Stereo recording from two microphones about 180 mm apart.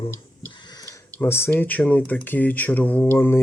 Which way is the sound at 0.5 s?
25° left (ahead or behind).